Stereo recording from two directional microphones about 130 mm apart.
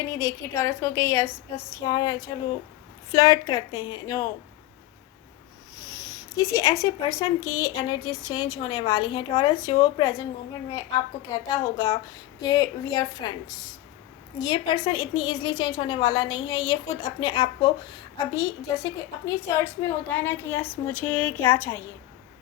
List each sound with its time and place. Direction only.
0.1 s speech: 25° left (ahead or behind)
5.7 s speech: 25° left (ahead or behind)
11.3 s a woman's voice: 30° left (ahead or behind)
14.3 s a woman's voice: 35° left (ahead or behind); by 21.8 s 15° left (ahead or behind)